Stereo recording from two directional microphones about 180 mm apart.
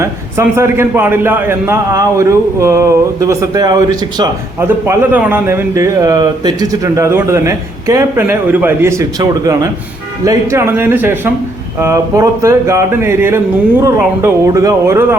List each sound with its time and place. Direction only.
0.0 s speech: 15° right (ahead or behind)